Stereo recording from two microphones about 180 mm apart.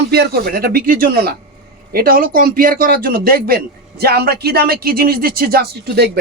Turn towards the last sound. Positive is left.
turn(degrees=-65)  # may be behind; listen again after turning